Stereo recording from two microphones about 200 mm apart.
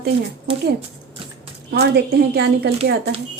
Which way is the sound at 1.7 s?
55° right (ahead or behind).